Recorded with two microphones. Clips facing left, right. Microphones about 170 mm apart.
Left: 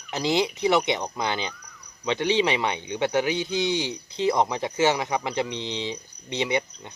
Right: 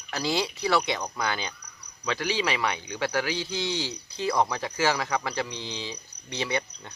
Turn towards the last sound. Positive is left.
turn(degrees=20)  # may be behind; listen again after turning